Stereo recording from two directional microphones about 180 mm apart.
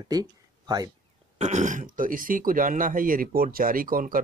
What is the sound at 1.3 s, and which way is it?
Speech, 40° right (ahead or behind).